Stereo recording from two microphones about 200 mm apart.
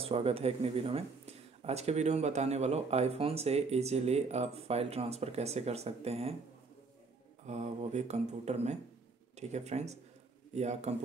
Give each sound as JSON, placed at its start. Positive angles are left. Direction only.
{"t": 0.0, "sound": "speech", "side_deg": -30}
{"t": 7.4, "sound": "speech", "side_deg": -35}